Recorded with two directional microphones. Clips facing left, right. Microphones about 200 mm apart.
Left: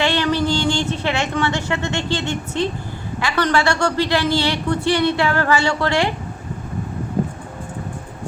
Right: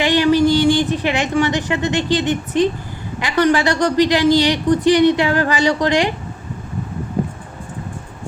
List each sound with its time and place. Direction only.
0.0 s a woman's voice: 15° right (ahead or behind)